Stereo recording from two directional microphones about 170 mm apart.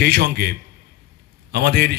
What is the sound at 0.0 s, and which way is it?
A man's voice, 70° right (ahead or behind).